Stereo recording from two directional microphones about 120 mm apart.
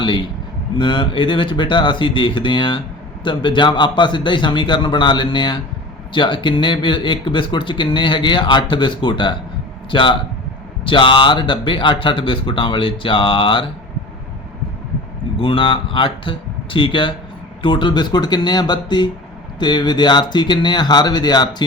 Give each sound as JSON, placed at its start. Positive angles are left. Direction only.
{"t": 0.8, "sound": "speech", "side_deg": 40}
{"t": 15.4, "sound": "speech", "side_deg": 45}